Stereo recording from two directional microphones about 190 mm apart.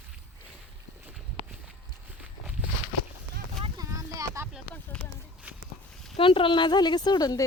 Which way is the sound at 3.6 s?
20° right (ahead or behind).